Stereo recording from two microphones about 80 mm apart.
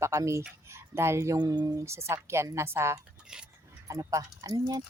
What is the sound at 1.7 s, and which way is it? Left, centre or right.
Speech, right.